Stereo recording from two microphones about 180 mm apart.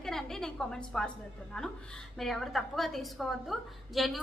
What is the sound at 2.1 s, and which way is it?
A woman's voice, centre (ahead or behind).